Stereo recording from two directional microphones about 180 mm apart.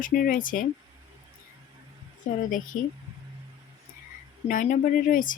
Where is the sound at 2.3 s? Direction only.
45° left (ahead or behind).